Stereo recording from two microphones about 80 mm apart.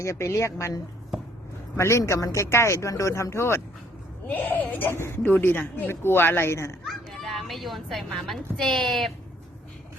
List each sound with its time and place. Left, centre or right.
0.0 s speech: left
4.3 s speech: left
6.8 s a child's voice: centre